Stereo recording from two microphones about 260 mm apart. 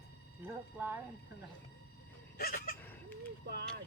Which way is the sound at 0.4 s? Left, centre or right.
Centre.